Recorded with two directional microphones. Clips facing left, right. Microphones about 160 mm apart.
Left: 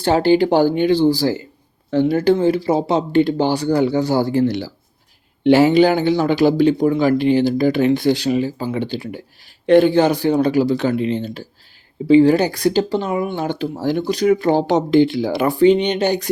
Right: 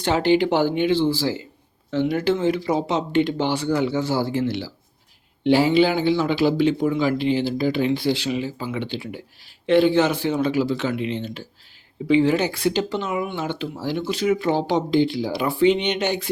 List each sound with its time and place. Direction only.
0.0 s speech: 35° left (ahead or behind)
5.4 s speech: 60° left (ahead or behind)
5.7 s speech: 45° left (ahead or behind)
14.8 s speech: 55° left (ahead or behind)